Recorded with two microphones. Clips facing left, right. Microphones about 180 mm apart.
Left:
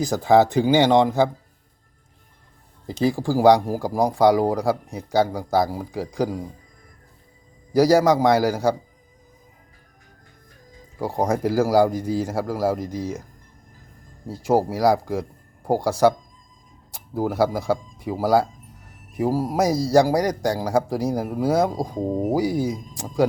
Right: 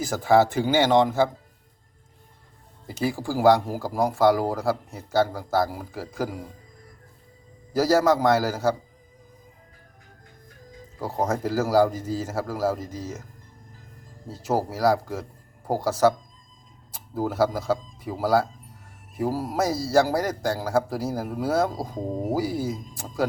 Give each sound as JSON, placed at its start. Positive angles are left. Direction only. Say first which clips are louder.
{"t": 0.0, "sound": "a man's voice", "louder": "left 3 dB", "side_deg": 15}
{"t": 2.8, "sound": "a man's voice", "louder": "left 5 dB", "side_deg": 15}
{"t": 7.7, "sound": "a man's voice", "louder": "left 4 dB", "side_deg": 15}
{"t": 11.0, "sound": "a man's voice", "louder": "left 4 dB", "side_deg": 10}
{"t": 14.3, "sound": "a man's voice", "louder": "left 5 dB", "side_deg": 10}